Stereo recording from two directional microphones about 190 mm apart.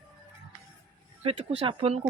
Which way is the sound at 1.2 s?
30° right (ahead or behind).